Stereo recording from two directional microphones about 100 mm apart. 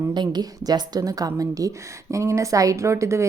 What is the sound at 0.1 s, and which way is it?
A woman's voice, 45° right (ahead or behind).